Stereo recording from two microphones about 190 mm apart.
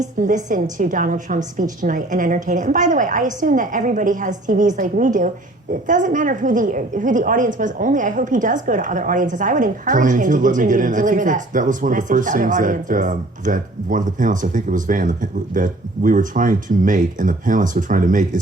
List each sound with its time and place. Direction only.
0.2 s a woman's voice: 40° right (ahead or behind)